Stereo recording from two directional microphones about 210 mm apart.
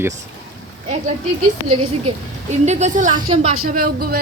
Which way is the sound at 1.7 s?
30° right (ahead or behind).